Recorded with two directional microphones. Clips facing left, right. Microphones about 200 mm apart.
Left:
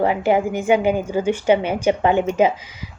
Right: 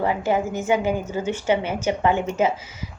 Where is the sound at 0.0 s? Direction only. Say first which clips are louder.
Left 4 dB; 20° left (ahead or behind).